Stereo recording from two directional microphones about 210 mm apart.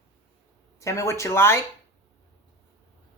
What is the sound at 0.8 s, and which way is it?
Speech, 15° left (ahead or behind).